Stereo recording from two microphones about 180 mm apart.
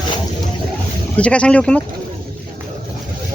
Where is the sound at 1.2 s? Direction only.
5° left (ahead or behind).